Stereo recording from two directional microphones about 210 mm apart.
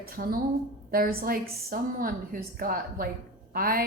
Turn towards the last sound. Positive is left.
turn(degrees=-45)  # may be behind; listen again after turning